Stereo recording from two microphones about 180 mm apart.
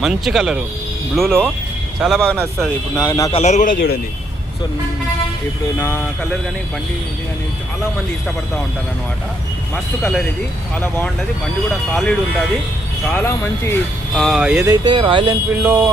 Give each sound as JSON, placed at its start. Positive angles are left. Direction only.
{"t": 0.0, "sound": "speech", "side_deg": 0}
{"t": 3.0, "sound": "a man's voice", "side_deg": 20}
{"t": 3.3, "sound": "a man's voice", "side_deg": 40}
{"t": 5.8, "sound": "speech", "side_deg": 15}
{"t": 9.7, "sound": "speech", "side_deg": 5}
{"t": 14.6, "sound": "speech", "side_deg": -25}
{"t": 15.6, "sound": "a sound", "side_deg": -10}